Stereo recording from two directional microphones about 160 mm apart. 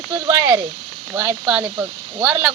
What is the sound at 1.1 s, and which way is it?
Speech, 10° right (ahead or behind).